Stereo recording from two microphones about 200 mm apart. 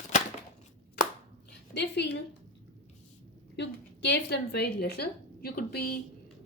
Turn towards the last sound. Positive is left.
turn(degrees=50)  # may be behind; listen again after turning